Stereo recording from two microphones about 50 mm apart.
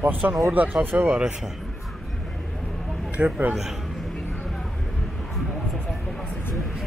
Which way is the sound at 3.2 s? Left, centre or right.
Right.